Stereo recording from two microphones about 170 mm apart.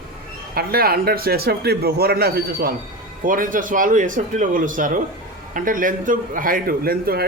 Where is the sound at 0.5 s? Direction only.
65° right (ahead or behind).